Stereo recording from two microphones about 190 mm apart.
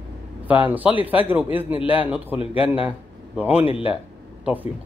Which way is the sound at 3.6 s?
30° left (ahead or behind).